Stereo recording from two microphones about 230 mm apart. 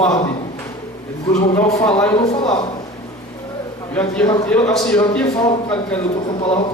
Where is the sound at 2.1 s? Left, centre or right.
Left.